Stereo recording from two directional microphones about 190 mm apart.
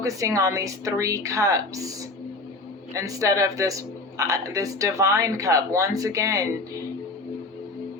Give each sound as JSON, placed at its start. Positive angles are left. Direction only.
{"t": 0.0, "sound": "speech", "side_deg": -15}
{"t": 2.9, "sound": "speech", "side_deg": -15}